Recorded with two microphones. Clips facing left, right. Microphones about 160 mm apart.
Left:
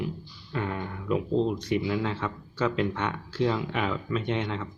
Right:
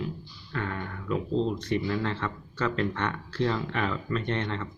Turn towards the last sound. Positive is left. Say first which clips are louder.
# left 1 dB
turn(degrees=5)  # may be behind; listen again after turning